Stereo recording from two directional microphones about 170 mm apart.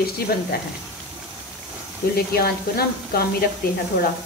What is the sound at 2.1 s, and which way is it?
Speech, 65° left (ahead or behind).